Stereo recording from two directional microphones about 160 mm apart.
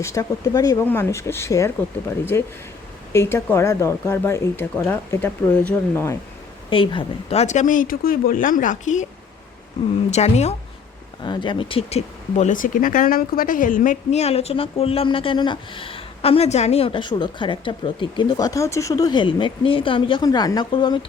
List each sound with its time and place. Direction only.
0.0 s speech: 20° left (ahead or behind)
6.7 s speech: 30° left (ahead or behind); by 9.0 s 50° left (ahead or behind)
10.1 s speech: 45° left (ahead or behind)
11.2 s speech: 30° left (ahead or behind)